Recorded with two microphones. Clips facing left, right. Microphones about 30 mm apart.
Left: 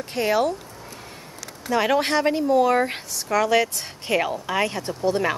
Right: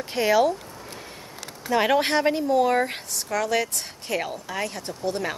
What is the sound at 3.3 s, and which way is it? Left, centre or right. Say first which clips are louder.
A woman's voice: left 5 dB; centre.